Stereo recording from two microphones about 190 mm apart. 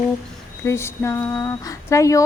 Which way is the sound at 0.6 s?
15° left (ahead or behind).